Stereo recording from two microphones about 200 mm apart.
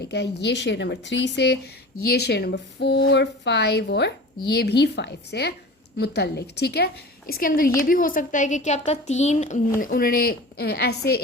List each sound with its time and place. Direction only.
0.0 s speech: 55° left (ahead or behind)